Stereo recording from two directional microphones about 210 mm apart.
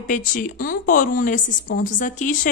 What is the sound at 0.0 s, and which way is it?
Speech, 40° left (ahead or behind).